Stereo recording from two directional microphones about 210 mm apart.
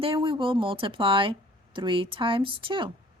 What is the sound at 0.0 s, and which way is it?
Speech, 25° right (ahead or behind).